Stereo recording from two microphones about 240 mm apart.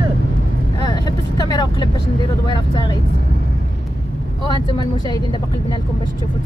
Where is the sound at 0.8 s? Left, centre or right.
Centre.